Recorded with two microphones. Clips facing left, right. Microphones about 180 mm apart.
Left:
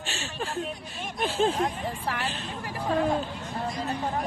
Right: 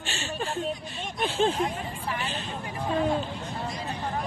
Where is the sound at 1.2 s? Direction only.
Centre (ahead or behind).